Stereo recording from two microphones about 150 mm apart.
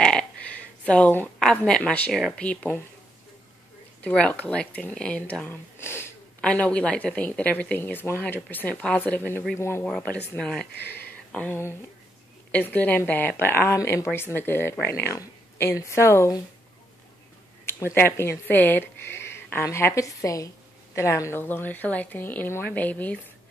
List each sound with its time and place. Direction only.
0.0 s speech: 5° left (ahead or behind)
4.0 s speech: 10° left (ahead or behind)
9.8 s speech: 5° left (ahead or behind)
10.7 s speech: 90° left
12.4 s speech: 10° left (ahead or behind)
17.9 s speech: 15° left (ahead or behind)